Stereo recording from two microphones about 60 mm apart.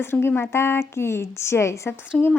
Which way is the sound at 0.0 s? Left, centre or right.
Left.